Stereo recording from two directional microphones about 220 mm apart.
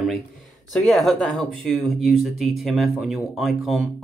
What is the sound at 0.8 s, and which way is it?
Speech, centre (ahead or behind).